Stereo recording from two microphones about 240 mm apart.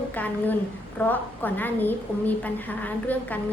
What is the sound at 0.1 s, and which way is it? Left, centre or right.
A woman's voice, centre.